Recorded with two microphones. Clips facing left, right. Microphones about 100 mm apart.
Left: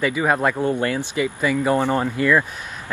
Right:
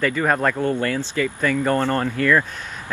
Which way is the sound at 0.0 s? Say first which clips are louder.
Even; 10° left (ahead or behind).